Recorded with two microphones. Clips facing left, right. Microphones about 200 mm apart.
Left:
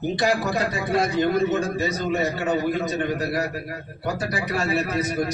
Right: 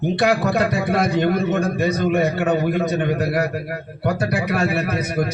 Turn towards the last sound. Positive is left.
turn(degrees=-60)  # may be behind; listen again after turning